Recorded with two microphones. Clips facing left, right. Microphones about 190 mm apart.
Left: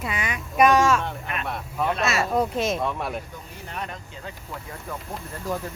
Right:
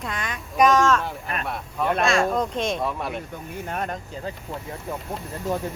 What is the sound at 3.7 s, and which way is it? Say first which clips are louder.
Speech: right 5 dB; 45° right (ahead or behind).